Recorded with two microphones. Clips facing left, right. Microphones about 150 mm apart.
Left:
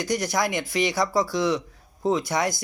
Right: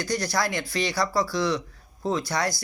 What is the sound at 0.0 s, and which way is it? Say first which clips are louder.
Speech: left 2 dB; 20° left (ahead or behind).